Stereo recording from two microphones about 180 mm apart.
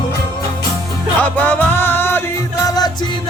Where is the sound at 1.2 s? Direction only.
10° left (ahead or behind).